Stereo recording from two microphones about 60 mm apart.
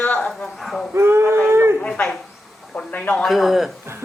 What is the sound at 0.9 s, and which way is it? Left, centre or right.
Male singing, right.